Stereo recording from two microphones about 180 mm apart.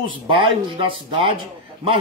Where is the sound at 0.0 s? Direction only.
30° right (ahead or behind).